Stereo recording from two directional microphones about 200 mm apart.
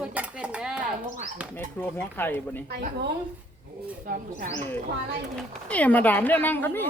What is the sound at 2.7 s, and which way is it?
Speech, 55° right (ahead or behind).